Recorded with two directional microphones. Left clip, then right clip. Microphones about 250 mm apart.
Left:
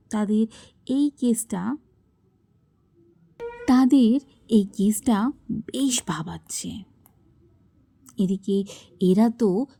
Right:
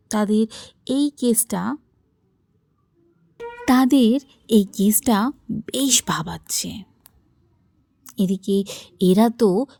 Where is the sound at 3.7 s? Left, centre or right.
Right.